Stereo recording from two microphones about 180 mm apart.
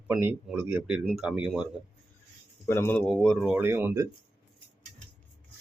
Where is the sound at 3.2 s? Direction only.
Centre (ahead or behind).